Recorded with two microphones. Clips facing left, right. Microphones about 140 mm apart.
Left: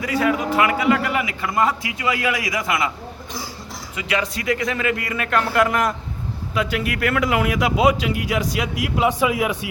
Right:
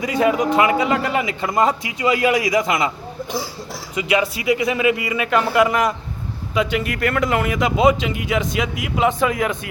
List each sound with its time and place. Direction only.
0.0 s a man's voice: 20° right (ahead or behind)
3.9 s a man's voice: 10° right (ahead or behind); by 9.6 s 10° left (ahead or behind)